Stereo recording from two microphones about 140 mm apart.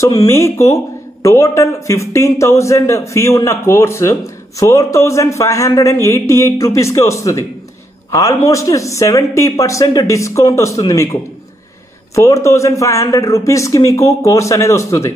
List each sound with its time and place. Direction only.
0.0 s speech: 20° left (ahead or behind)
12.2 s speech: 20° left (ahead or behind)